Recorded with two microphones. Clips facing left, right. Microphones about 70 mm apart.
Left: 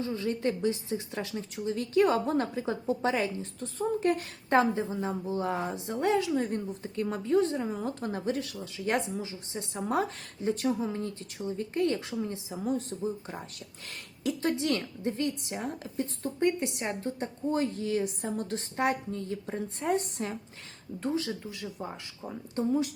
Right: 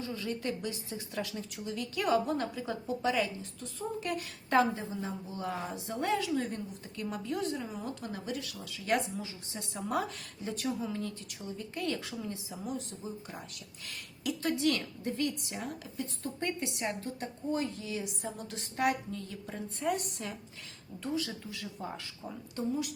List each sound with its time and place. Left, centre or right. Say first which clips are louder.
0.0 s a woman's voice: left 6 dB; left
5.6 s a woman's voice: left 4 dB; left
8.6 s a woman's voice: left 1 dB; left
12.6 s a woman's voice: left 8 dB; left; by 22.4 s centre